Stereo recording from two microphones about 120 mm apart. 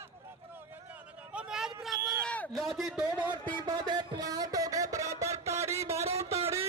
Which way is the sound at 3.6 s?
40° right (ahead or behind).